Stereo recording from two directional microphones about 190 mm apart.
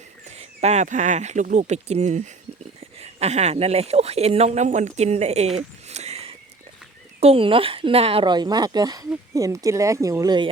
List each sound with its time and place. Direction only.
0.3 s speech: 35° right (ahead or behind)
5.5 s a sound: 35° right (ahead or behind)
7.2 s speech: 30° right (ahead or behind)